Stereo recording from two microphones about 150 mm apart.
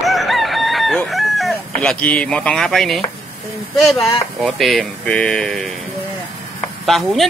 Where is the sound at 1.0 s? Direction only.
Centre (ahead or behind).